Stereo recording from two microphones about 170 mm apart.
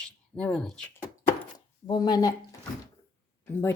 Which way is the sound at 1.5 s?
25° left (ahead or behind).